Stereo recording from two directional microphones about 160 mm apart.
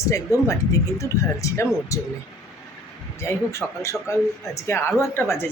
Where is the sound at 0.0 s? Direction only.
20° left (ahead or behind).